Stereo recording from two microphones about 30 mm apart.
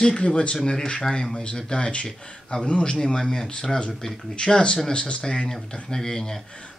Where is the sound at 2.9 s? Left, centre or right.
Centre.